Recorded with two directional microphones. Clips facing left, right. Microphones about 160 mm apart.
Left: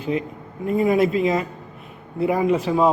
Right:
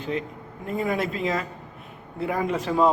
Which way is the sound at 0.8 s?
15° left (ahead or behind).